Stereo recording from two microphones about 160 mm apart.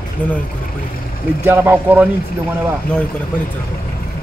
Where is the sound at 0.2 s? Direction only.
10° left (ahead or behind).